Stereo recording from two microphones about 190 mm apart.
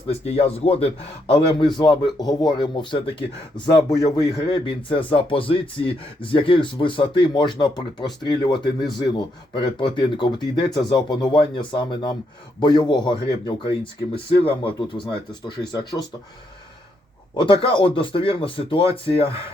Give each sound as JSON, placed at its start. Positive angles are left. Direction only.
{"t": 0.1, "sound": "a man's voice", "side_deg": 30}
{"t": 17.3, "sound": "a man's voice", "side_deg": 25}